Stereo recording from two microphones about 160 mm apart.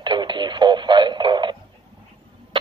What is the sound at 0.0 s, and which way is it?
Speech, 30° right (ahead or behind).